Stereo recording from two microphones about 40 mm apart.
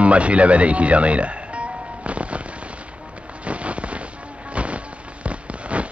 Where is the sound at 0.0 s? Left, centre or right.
Right.